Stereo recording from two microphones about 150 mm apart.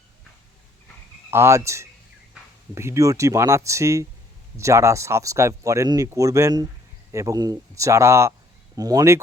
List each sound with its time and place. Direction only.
1.3 s speech: 20° right (ahead or behind)